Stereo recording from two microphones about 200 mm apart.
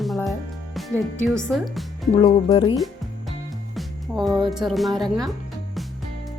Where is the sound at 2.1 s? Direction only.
25° left (ahead or behind).